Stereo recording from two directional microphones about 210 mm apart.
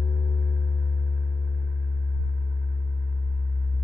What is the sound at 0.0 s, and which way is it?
Gong, 40° left (ahead or behind).